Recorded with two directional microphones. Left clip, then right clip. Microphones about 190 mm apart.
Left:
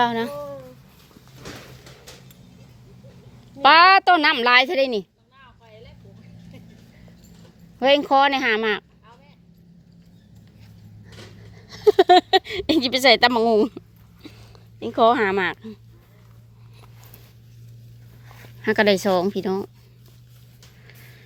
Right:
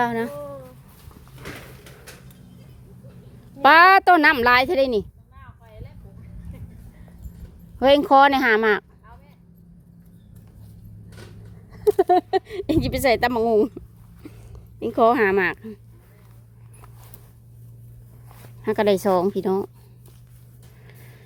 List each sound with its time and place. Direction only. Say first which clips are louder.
0.0 s speech: left 2 dB; 15° right (ahead or behind)
3.6 s a woman's voice: even; 25° right (ahead or behind)
7.8 s a woman's voice: right 2 dB; 25° right (ahead or behind)
11.9 s a woman's voice: left 5 dB; centre (ahead or behind); by 15.8 s 20° right (ahead or behind)
18.4 s speech: left 2 dB; centre (ahead or behind)
20.8 s music: left 1 dB; 20° right (ahead or behind)